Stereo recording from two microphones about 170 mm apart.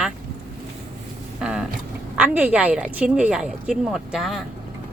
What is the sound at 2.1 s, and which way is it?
Speech, 10° right (ahead or behind).